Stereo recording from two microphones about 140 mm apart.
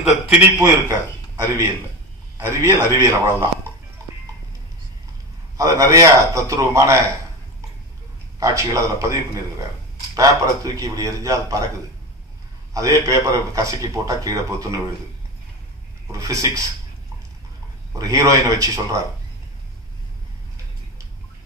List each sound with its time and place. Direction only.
0.6 s a man's voice: 25° right (ahead or behind)
5.6 s a man's voice: 20° right (ahead or behind)
8.4 s a man's voice: 25° right (ahead or behind)
12.7 s a man's voice: 25° right (ahead or behind)
16.1 s a man's voice: 25° right (ahead or behind)
17.9 s a man's voice: 25° right (ahead or behind)